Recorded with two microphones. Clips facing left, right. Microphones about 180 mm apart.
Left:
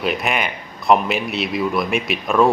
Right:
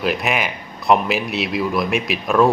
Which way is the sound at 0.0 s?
Centre (ahead or behind).